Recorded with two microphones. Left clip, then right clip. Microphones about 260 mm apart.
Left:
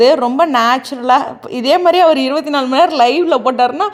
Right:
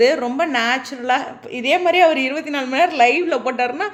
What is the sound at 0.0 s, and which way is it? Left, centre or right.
A woman's voice, left.